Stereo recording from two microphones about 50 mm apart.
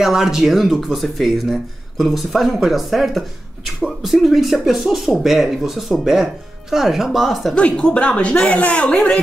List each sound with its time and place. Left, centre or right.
0.0 s speech: centre
7.5 s speech: centre